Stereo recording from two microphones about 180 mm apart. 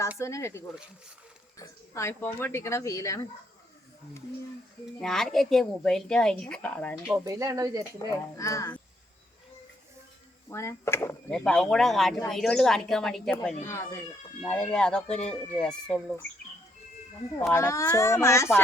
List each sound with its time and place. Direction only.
0.2 s speech: 15° left (ahead or behind)
4.9 s speech: centre (ahead or behind)
7.3 s speech: 20° right (ahead or behind)
8.1 s speech: 15° left (ahead or behind)
10.5 s speech: 15° left (ahead or behind)
17.5 s speech: 15° left (ahead or behind)